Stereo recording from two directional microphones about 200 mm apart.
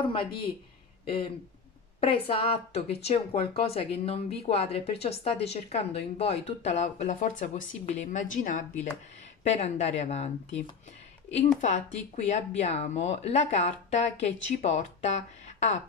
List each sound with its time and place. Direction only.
0.0 s speech: 25° left (ahead or behind)
11.6 s speech: 35° left (ahead or behind)